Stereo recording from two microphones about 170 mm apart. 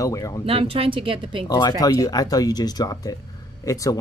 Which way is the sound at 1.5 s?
25° left (ahead or behind).